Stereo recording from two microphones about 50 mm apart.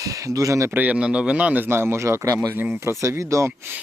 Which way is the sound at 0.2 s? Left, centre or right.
Right.